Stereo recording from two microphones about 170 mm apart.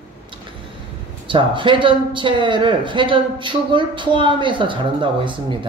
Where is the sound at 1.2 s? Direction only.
30° right (ahead or behind).